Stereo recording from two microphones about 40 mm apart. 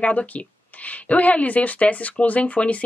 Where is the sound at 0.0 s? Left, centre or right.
Left.